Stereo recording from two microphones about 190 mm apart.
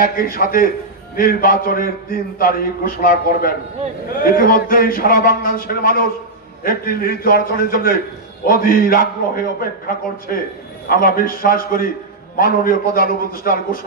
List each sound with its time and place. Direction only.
0.0 s a man's voice: 50° left (ahead or behind)